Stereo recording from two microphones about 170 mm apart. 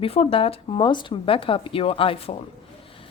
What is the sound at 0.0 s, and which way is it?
A woman's voice, 35° left (ahead or behind).